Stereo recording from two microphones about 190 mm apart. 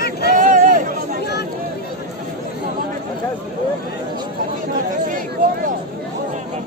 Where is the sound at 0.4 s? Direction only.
45° right (ahead or behind).